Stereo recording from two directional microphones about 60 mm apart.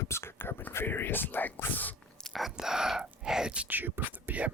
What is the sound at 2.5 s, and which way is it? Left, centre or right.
Whispering, centre.